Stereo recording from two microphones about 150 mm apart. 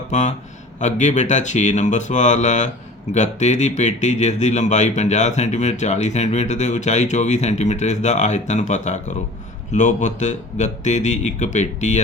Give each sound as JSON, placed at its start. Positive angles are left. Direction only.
{"t": 0.1, "sound": "speech", "side_deg": 50}